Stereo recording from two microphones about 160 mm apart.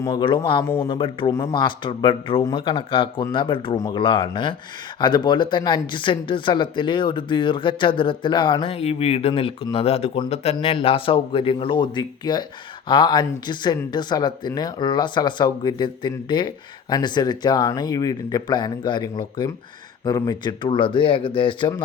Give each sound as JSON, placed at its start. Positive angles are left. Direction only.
{"t": 0.0, "sound": "speech", "side_deg": 25}